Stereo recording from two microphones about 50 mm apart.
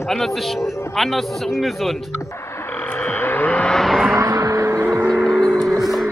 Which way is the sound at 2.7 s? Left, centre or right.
Left.